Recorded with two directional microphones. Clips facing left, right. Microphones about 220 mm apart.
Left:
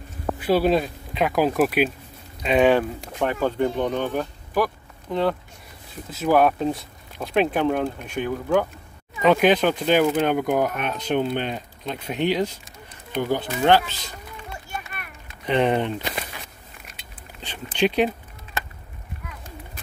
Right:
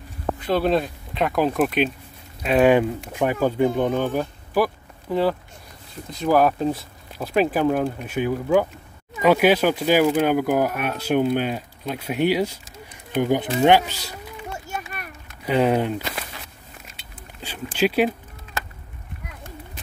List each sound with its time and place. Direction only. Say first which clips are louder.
0.4 s speech: left 1 dB; 5° left (ahead or behind)
6.0 s speech: even; 5° left (ahead or behind)
14.7 s a sound: right 3 dB; 40° right (ahead or behind)
15.4 s speech: right 1 dB; 5° right (ahead or behind)
17.7 s speech: right 1 dB; 5° right (ahead or behind)